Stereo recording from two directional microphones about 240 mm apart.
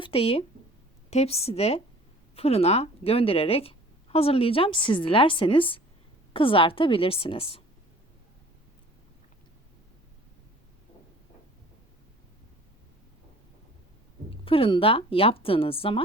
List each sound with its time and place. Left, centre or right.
0.0 s a woman's voice: left
14.4 s speech: left